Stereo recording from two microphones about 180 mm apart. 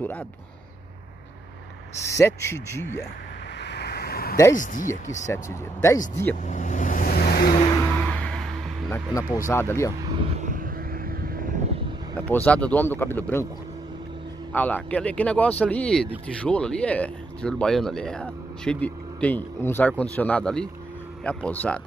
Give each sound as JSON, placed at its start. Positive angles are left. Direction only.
{"t": 2.0, "sound": "speech", "side_deg": 15}
{"t": 3.6, "sound": "vehicle", "side_deg": 70}
{"t": 4.6, "sound": "speech", "side_deg": 45}
{"t": 5.2, "sound": "speech", "side_deg": 15}
{"t": 6.4, "sound": "vehicle", "side_deg": 45}
{"t": 7.5, "sound": "vehicle", "side_deg": 25}
{"t": 7.8, "sound": "vehicle", "side_deg": 5}
{"t": 9.5, "sound": "speech", "side_deg": 15}
{"t": 10.0, "sound": "vehicle", "side_deg": -30}
{"t": 12.2, "sound": "speech", "side_deg": 10}
{"t": 14.5, "sound": "speech", "side_deg": 10}